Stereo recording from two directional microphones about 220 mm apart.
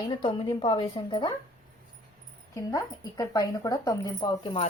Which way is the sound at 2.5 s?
15° left (ahead or behind).